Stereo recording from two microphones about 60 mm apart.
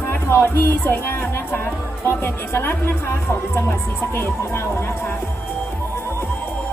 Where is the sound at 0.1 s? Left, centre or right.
Left.